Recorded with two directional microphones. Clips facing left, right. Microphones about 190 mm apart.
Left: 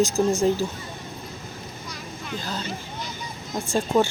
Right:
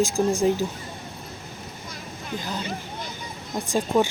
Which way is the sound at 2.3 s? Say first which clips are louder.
Right 1 dB; 15° right (ahead or behind).